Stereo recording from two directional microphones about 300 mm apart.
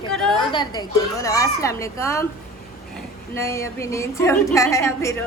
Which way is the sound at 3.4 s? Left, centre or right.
Centre.